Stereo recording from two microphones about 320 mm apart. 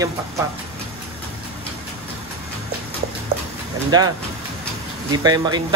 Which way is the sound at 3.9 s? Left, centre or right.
Centre.